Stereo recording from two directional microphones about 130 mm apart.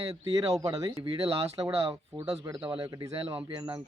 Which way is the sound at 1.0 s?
45° right (ahead or behind).